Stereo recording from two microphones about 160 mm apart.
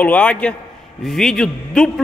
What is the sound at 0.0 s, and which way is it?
A man's voice, 10° left (ahead or behind).